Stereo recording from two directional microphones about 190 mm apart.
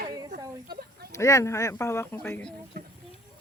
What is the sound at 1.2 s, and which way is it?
Speech, 15° left (ahead or behind).